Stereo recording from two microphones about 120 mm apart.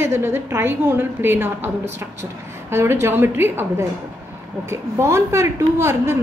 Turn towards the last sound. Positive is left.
turn(degrees=-20)  # may be behind; listen again after turning